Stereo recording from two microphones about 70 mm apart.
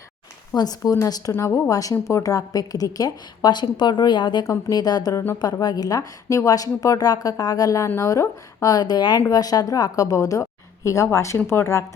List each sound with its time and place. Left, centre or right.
0.5 s speech: left
1.3 s speech: left
1.7 s a woman's voice: left
4.7 s a woman's voice: left
7.9 s a woman's voice: left
9.3 s a woman's voice: left